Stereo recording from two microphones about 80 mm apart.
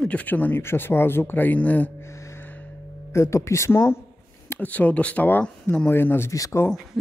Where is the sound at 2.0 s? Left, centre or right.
Left.